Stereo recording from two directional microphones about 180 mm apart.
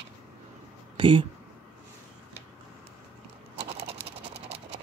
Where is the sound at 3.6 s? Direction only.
35° right (ahead or behind).